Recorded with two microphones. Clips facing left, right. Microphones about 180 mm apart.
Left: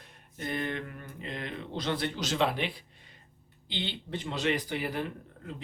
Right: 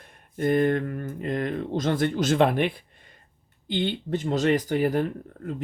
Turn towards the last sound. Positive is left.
turn(degrees=-50)  # may be behind; listen again after turning